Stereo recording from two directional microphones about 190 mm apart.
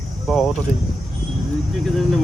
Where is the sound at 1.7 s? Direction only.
Centre (ahead or behind).